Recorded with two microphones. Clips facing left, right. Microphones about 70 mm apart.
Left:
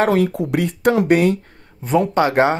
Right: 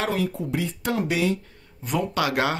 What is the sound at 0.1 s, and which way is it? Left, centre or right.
Speech, left.